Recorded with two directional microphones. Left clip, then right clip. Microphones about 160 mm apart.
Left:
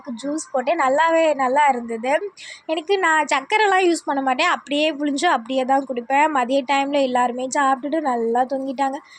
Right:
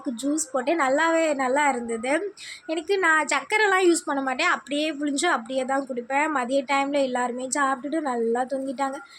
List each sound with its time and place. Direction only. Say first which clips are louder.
0.3 s speech: left 5 dB; 20° left (ahead or behind)